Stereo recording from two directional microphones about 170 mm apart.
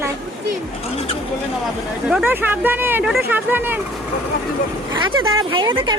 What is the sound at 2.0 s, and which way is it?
Speech, 10° right (ahead or behind).